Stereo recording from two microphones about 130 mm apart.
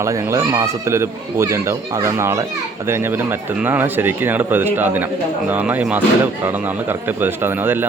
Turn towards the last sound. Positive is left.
turn(degrees=-15)  # may be behind; listen again after turning